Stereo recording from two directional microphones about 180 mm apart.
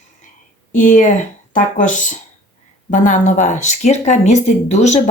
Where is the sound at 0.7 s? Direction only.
45° left (ahead or behind).